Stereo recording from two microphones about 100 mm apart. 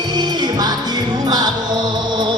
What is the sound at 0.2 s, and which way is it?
Music, 45° right (ahead or behind).